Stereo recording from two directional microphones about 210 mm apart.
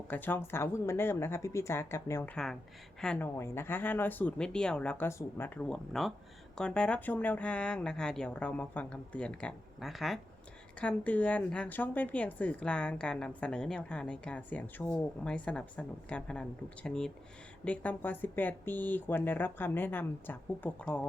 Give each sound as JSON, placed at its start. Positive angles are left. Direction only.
{"t": 0.1, "sound": "a woman's voice", "side_deg": 10}